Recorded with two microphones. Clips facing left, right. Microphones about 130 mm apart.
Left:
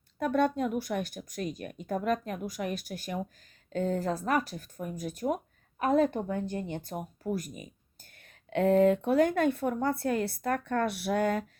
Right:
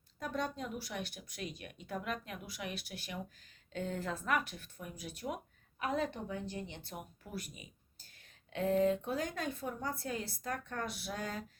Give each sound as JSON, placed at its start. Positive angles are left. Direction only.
{"t": 0.2, "sound": "speech", "side_deg": 60}
{"t": 8.4, "sound": "speech", "side_deg": 65}